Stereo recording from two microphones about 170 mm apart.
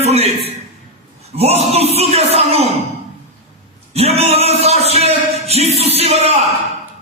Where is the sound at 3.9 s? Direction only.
35° right (ahead or behind).